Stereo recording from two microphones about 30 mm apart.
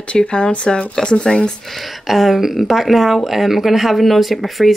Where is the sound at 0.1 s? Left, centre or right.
Left.